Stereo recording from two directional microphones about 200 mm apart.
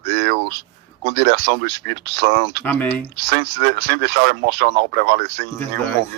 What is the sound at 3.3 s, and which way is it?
Speech, 60° right (ahead or behind).